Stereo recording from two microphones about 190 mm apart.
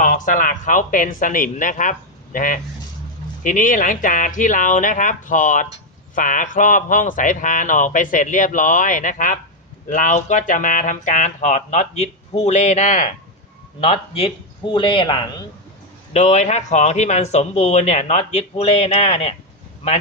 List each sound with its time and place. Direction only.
0.0 s a man's voice: 45° left (ahead or behind)
13.8 s speech: 30° left (ahead or behind)
16.1 s a man's voice: 35° left (ahead or behind)